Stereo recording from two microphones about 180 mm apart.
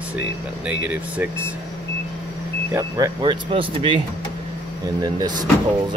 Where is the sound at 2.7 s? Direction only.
20° right (ahead or behind).